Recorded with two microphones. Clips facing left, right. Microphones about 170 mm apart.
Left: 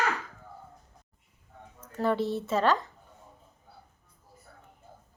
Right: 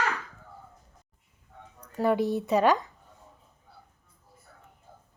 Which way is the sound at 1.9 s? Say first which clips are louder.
Right 3 dB; 15° right (ahead or behind).